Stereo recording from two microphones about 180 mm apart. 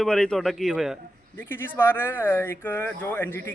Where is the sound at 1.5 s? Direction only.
15° left (ahead or behind).